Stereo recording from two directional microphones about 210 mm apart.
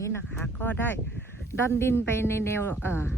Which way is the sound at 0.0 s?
10° left (ahead or behind).